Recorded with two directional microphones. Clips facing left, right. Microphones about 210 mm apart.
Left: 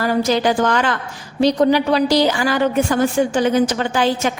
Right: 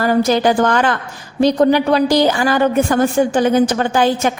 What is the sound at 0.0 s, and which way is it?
A woman's voice, 50° right (ahead or behind).